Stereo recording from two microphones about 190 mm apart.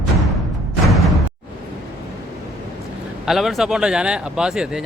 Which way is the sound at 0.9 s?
Centre (ahead or behind).